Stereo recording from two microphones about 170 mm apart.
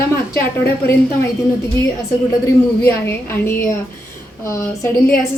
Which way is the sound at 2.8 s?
15° left (ahead or behind).